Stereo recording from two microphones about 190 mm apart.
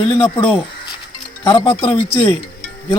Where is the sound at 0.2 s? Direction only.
25° left (ahead or behind).